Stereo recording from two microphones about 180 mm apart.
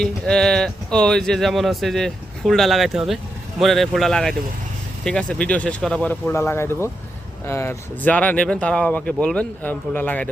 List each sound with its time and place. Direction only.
0.0 s speech: 5° left (ahead or behind)